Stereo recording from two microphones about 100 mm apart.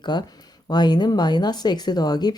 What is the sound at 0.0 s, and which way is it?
Speech, 45° left (ahead or behind).